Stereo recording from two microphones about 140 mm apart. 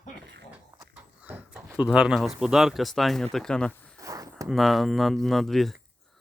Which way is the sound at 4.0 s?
25° right (ahead or behind).